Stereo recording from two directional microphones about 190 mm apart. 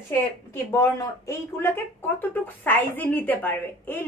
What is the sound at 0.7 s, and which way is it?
A woman's voice, 15° left (ahead or behind).